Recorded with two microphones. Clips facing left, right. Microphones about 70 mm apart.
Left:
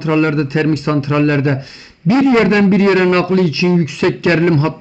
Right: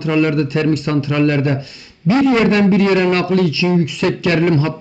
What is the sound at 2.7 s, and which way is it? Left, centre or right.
A man's voice, left.